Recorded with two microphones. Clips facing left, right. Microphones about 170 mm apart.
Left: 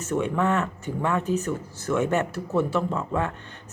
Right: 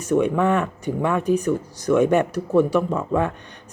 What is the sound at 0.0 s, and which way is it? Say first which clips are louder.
Speech: right 5 dB; 15° right (ahead or behind).